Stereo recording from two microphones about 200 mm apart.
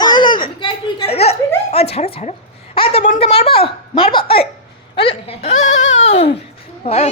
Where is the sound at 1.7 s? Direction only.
30° left (ahead or behind).